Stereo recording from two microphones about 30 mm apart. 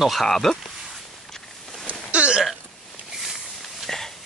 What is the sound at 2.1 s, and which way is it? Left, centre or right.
Hiccup, right.